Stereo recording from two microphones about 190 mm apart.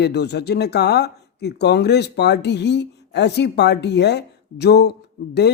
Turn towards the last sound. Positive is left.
turn(degrees=60)  # may be behind; listen again after turning